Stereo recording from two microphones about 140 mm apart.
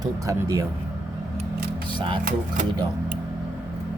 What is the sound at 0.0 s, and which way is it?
Speech, 25° right (ahead or behind).